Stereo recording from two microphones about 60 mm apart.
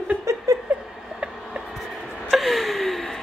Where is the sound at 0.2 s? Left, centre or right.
Right.